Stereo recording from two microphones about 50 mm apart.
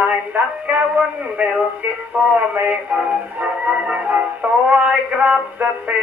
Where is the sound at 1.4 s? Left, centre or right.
Right.